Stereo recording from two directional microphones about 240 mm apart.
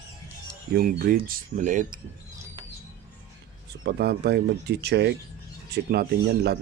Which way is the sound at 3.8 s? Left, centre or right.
Right.